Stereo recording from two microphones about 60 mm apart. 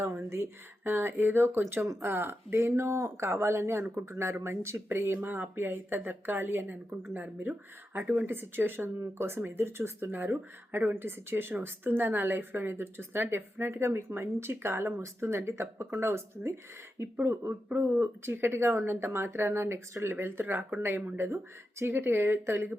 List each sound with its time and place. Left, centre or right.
0.0 s speech: right
15.0 s speech: right
18.3 s speech: right